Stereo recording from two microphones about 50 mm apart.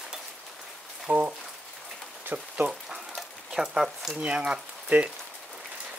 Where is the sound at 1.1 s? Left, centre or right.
Right.